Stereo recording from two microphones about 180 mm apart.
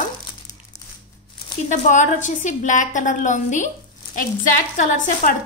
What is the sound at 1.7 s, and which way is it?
A woman's voice, 45° left (ahead or behind).